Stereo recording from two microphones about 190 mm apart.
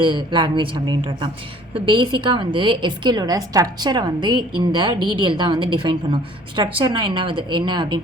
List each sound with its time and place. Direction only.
0.0 s a woman's voice: 25° right (ahead or behind)